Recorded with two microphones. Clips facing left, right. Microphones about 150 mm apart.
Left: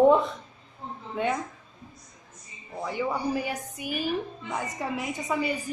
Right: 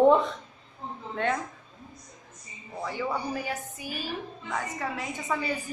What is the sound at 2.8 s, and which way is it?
A woman's voice, 15° left (ahead or behind).